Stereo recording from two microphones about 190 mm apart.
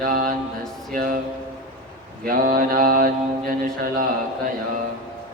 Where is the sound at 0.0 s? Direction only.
45° right (ahead or behind).